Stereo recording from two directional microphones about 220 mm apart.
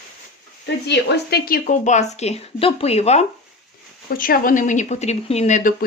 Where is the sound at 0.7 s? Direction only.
50° left (ahead or behind); by 3.2 s 30° left (ahead or behind).